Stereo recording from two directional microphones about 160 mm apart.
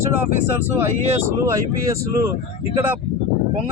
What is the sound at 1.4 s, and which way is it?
Speech, 20° right (ahead or behind).